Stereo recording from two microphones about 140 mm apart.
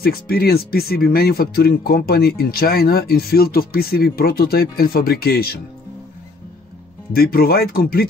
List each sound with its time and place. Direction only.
0.0 s speech: 90° left
7.1 s speech: 90° left